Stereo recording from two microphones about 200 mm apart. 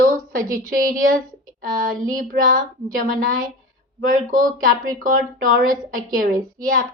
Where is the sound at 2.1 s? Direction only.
45° right (ahead or behind).